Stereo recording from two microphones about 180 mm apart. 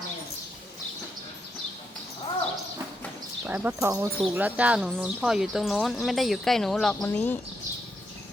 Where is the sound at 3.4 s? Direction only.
10° right (ahead or behind); by 7.3 s 10° left (ahead or behind).